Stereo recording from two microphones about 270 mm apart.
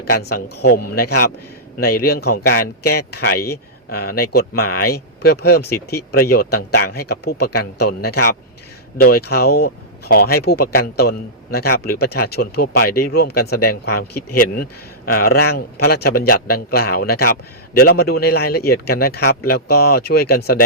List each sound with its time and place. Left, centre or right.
0.0 s speech: left
1.8 s speech: left